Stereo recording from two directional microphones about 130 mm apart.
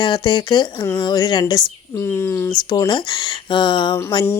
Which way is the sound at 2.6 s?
30° left (ahead or behind).